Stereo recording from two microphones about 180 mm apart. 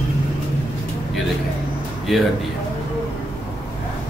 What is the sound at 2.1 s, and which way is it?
Speech, centre (ahead or behind).